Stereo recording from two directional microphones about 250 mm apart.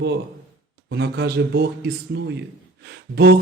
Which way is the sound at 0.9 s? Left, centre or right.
Right.